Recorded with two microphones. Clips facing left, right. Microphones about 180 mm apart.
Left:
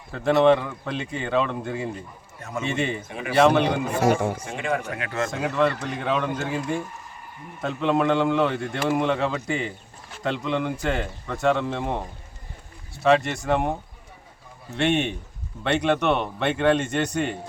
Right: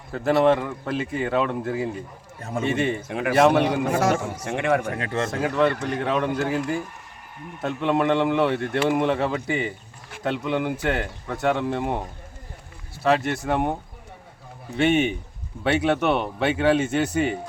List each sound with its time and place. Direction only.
0.1 s a man's voice: 5° right (ahead or behind)
3.1 s speech: 65° right (ahead or behind)
3.4 s a man's voice: 5° right (ahead or behind)
3.8 s a man's voice: 75° right (ahead or behind)
4.9 s speech: 30° right (ahead or behind)
5.3 s a man's voice: centre (ahead or behind)
14.8 s a man's voice: centre (ahead or behind)